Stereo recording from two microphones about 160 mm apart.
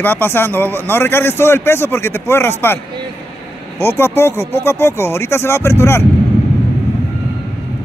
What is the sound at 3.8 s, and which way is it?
A man's voice, 15° left (ahead or behind).